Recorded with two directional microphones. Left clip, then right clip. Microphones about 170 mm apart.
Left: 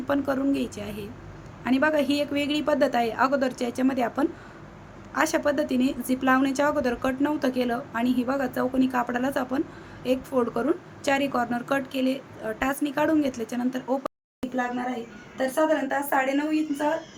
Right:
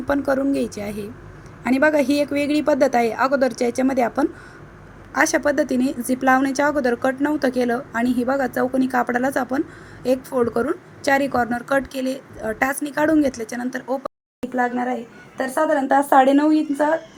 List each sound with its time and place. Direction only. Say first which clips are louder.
0.1 s a woman's voice: right 5 dB; 25° right (ahead or behind)
14.4 s speech: right 5 dB; centre (ahead or behind)
15.9 s a woman's voice: right 10 dB; 30° right (ahead or behind)